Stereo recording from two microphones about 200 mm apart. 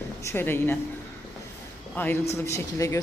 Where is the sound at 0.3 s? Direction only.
10° left (ahead or behind).